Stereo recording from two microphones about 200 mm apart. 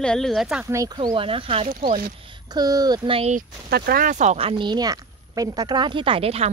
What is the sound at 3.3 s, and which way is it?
Speech, 45° right (ahead or behind).